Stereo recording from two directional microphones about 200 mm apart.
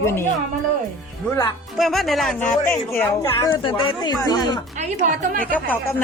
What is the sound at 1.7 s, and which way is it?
Speech, centre (ahead or behind).